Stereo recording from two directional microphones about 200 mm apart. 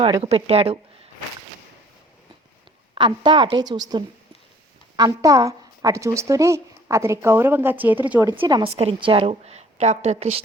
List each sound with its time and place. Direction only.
0.0 s a woman's voice: 30° right (ahead or behind)
2.9 s a woman's voice: 25° right (ahead or behind)
4.9 s a woman's voice: 15° right (ahead or behind)
8.4 s a woman's voice: 25° right (ahead or behind)